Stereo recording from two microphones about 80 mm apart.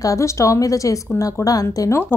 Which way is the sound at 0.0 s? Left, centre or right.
Left.